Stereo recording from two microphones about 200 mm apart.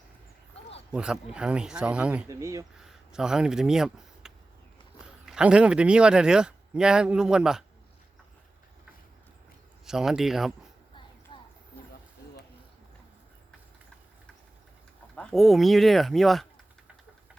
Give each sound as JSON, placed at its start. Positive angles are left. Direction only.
{"t": 0.9, "sound": "speech", "side_deg": -5}
{"t": 3.1, "sound": "speech", "side_deg": -5}
{"t": 9.8, "sound": "speech", "side_deg": 0}
{"t": 11.3, "sound": "a sound", "side_deg": 25}
{"t": 15.1, "sound": "speech", "side_deg": 5}